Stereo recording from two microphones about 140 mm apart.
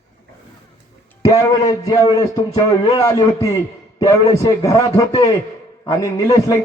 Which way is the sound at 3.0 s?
25° left (ahead or behind).